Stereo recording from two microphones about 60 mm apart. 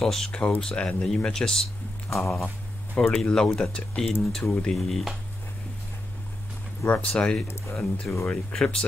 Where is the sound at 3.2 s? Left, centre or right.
Centre.